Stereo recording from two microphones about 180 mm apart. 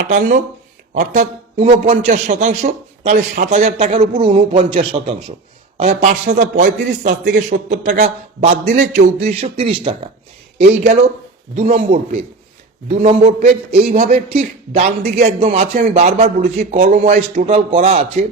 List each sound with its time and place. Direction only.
0.1 s a man's voice: 45° right (ahead or behind)
10.6 s speech: 50° right (ahead or behind)
11.5 s a man's voice: 35° right (ahead or behind)
12.9 s a man's voice: 35° right (ahead or behind)